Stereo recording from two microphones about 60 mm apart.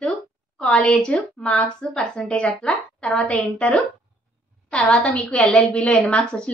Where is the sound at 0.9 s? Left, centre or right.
Centre.